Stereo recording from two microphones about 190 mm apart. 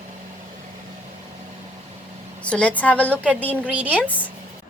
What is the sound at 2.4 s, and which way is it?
Speech, 5° left (ahead or behind).